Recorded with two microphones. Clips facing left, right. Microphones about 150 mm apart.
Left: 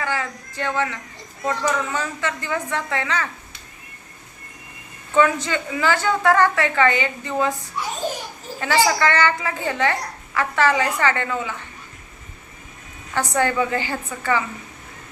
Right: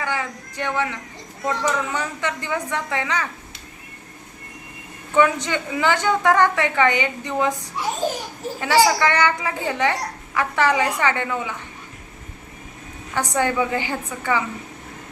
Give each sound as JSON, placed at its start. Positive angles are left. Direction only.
{"t": 0.0, "sound": "a man's voice", "side_deg": -15}
{"t": 5.1, "sound": "a woman's voice", "side_deg": -15}
{"t": 13.1, "sound": "a woman's voice", "side_deg": -15}